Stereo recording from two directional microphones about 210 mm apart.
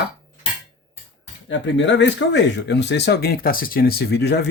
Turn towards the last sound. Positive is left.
turn(degrees=50)  # may be behind; listen again after turning